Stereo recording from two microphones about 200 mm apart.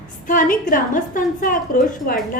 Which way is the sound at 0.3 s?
45° left (ahead or behind).